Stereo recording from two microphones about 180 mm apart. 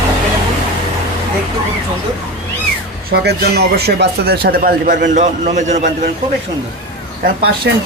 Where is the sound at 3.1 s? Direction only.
65° right (ahead or behind).